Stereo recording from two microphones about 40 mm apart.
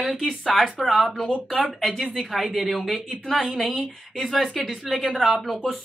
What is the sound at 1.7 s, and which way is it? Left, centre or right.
Speech, centre.